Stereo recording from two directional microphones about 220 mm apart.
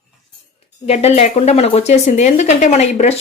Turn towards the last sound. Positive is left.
turn(degrees=30)  # may be behind; listen again after turning